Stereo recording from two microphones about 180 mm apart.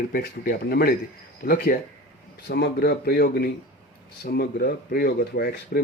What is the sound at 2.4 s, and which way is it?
Speech, 65° left (ahead or behind).